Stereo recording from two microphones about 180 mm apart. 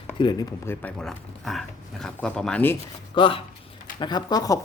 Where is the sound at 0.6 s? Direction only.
5° left (ahead or behind).